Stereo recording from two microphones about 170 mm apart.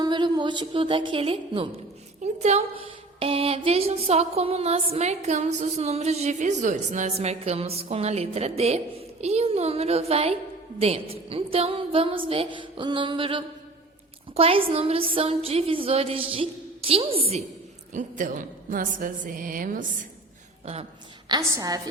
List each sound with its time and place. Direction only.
0.0 s a woman's voice: 25° right (ahead or behind)
17.9 s a woman's voice: 50° right (ahead or behind)
21.2 s a woman's voice: 25° right (ahead or behind)